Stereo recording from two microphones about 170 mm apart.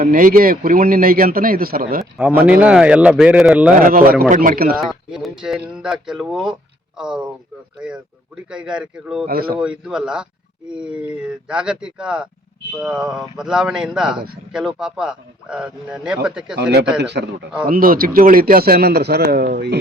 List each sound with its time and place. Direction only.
0.0 s a man's voice: 55° right (ahead or behind)
2.1 s speech: 5° right (ahead or behind)
3.8 s a man's voice: 55° right (ahead or behind)
5.1 s speech: 5° right (ahead or behind)
9.2 s a man's voice: 60° right (ahead or behind)
9.6 s speech: 5° right (ahead or behind)
17.0 s a man's voice: 80° right
17.7 s a man's voice: 55° right (ahead or behind)